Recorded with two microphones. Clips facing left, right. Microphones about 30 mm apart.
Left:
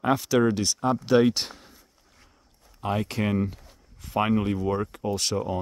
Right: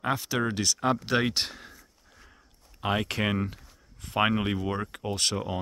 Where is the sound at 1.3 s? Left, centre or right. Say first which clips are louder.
Right 1 dB; right.